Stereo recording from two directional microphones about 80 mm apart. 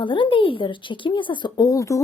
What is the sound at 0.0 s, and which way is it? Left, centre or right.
A woman's voice, left.